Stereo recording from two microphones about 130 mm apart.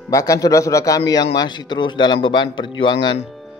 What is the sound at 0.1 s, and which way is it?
A man's voice, 25° left (ahead or behind).